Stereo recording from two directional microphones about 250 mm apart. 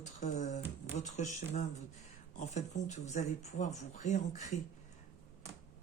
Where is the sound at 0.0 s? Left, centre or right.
Left.